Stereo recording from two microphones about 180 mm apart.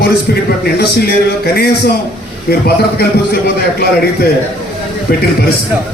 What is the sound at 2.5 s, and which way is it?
A man's voice, 60° left (ahead or behind).